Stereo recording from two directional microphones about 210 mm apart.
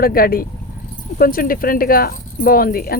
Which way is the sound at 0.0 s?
45° left (ahead or behind).